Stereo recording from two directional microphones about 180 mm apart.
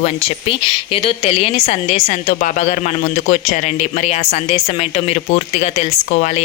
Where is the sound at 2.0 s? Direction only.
50° left (ahead or behind).